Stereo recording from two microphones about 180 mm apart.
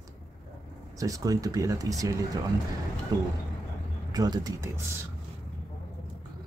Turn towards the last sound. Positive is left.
turn(degrees=-20)  # may be behind; listen again after turning